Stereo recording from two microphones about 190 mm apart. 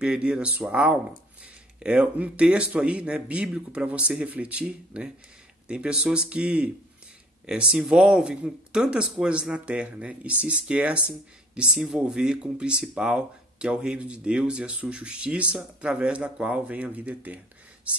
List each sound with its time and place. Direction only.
0.0 s speech: 5° right (ahead or behind)